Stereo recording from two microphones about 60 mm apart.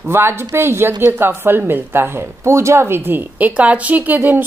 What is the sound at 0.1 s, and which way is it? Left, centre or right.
A woman's voice, right.